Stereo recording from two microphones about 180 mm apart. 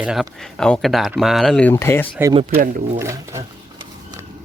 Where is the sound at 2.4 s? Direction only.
50° right (ahead or behind).